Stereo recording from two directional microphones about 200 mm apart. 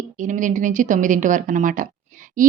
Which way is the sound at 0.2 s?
40° right (ahead or behind).